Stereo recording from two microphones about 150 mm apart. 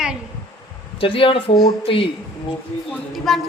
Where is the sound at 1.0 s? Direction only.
35° left (ahead or behind).